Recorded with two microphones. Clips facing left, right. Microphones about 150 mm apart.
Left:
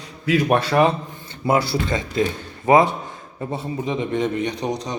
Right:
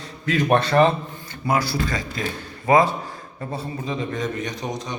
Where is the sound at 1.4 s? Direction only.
25° left (ahead or behind).